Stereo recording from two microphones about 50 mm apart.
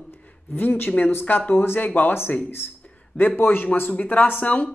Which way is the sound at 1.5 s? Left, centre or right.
Left.